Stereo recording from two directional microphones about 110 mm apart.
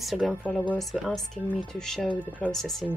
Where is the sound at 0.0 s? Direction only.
Centre (ahead or behind).